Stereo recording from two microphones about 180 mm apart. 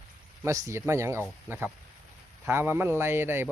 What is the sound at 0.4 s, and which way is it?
Speech, 15° right (ahead or behind).